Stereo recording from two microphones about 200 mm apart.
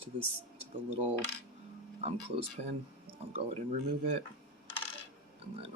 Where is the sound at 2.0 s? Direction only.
30° right (ahead or behind).